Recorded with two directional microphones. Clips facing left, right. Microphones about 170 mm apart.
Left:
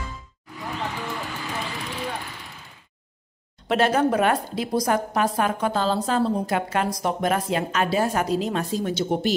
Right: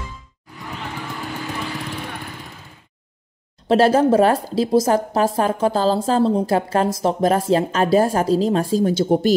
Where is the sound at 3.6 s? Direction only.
30° right (ahead or behind).